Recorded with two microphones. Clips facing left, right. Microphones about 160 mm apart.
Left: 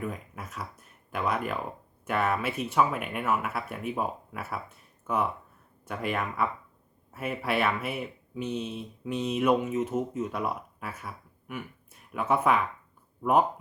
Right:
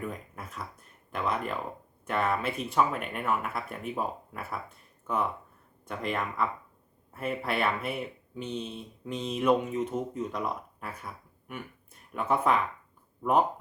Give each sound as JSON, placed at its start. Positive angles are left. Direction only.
{"t": 0.0, "sound": "speech", "side_deg": 5}